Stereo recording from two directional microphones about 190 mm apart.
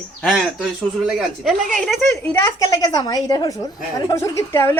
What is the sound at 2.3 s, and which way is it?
Speech, 15° left (ahead or behind).